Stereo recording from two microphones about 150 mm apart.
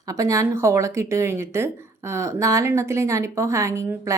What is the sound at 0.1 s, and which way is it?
Speech, 20° right (ahead or behind).